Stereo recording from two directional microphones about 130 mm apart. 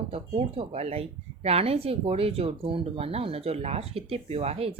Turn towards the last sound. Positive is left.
turn(degrees=-50)  # may be behind; listen again after turning